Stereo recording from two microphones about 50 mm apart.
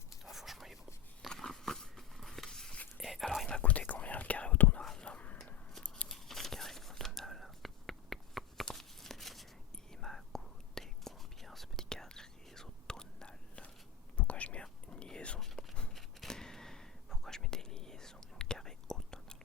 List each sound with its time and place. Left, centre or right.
0.3 s whispering: centre
1.3 s biting: centre
3.0 s whispering: centre
3.4 s whispering: left
4.8 s a sound: centre
6.1 s whispering: centre
8.7 s a sound: centre
9.7 s whispering: centre
15.9 s whispering: centre